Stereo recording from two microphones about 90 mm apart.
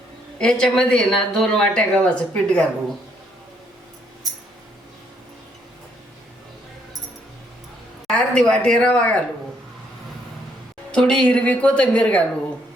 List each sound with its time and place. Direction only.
0.3 s speech: 10° left (ahead or behind)
8.1 s speech: 10° left (ahead or behind)
10.9 s speech: 10° left (ahead or behind)